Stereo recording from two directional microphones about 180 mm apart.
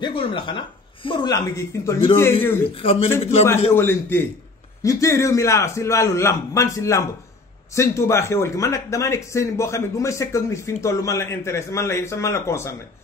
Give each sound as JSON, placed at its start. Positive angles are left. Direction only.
{"t": 0.0, "sound": "speech", "side_deg": 25}
{"t": 2.7, "sound": "a man's voice", "side_deg": 30}
{"t": 3.7, "sound": "speech", "side_deg": 10}